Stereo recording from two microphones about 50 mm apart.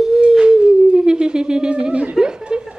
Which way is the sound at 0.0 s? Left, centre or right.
Centre.